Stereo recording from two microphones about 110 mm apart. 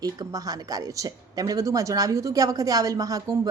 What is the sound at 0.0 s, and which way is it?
Speech, 35° right (ahead or behind).